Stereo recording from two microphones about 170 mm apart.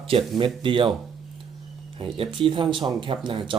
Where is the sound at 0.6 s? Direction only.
30° right (ahead or behind).